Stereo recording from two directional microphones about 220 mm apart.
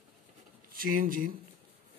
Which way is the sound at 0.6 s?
40° right (ahead or behind).